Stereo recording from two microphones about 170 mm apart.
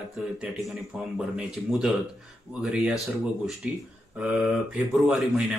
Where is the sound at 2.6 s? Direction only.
5° right (ahead or behind).